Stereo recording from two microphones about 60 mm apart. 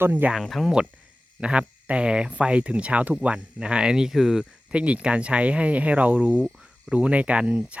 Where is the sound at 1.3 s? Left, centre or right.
Centre.